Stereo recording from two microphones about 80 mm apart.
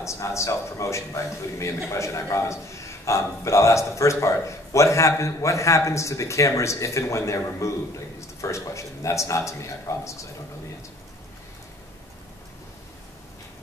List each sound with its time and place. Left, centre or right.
0.0 s a man's voice: left